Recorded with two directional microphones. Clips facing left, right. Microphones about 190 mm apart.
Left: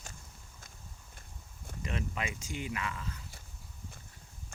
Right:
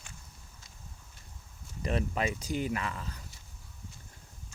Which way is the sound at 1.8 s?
40° right (ahead or behind).